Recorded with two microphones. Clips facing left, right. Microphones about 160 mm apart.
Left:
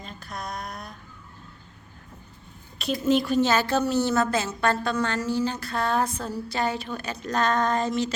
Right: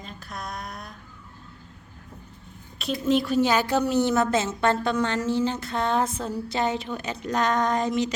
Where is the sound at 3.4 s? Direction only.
15° right (ahead or behind).